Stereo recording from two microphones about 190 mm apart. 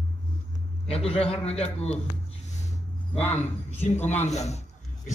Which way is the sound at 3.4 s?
10° left (ahead or behind).